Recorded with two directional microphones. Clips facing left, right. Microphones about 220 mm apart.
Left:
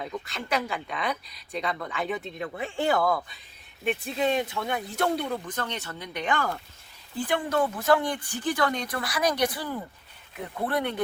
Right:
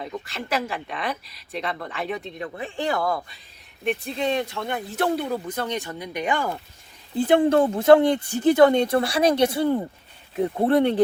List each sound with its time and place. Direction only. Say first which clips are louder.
0.0 s speech: right 2 dB; centre (ahead or behind)
7.2 s speech: right 8 dB; 25° right (ahead or behind)